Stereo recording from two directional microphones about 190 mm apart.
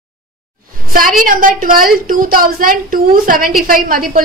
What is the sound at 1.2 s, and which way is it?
A woman's voice, 45° right (ahead or behind).